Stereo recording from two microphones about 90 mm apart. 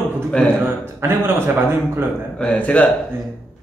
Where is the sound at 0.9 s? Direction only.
25° right (ahead or behind).